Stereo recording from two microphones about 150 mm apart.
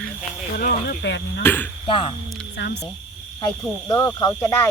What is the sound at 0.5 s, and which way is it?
Speech, 80° left.